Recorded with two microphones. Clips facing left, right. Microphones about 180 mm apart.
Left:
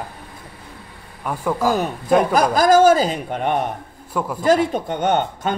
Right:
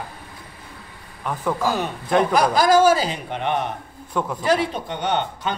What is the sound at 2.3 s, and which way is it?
Speech, 45° left (ahead or behind).